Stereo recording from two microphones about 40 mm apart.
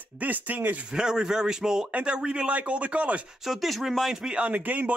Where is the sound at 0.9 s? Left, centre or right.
Centre.